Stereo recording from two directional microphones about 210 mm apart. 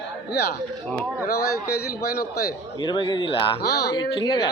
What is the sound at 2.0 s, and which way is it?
Speech, 45° left (ahead or behind).